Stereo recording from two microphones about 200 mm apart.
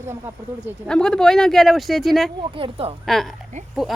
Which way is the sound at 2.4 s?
25° right (ahead or behind).